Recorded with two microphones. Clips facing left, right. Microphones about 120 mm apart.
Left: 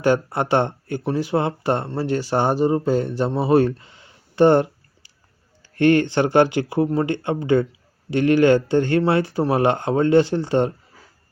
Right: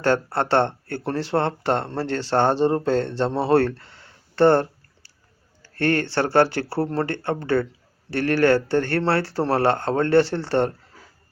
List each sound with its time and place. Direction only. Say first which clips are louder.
0.0 s speech: left 2 dB; 15° left (ahead or behind)